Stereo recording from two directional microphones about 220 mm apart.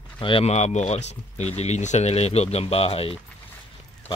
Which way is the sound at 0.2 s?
25° left (ahead or behind).